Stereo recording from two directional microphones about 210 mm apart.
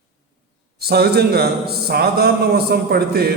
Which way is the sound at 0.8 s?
50° right (ahead or behind).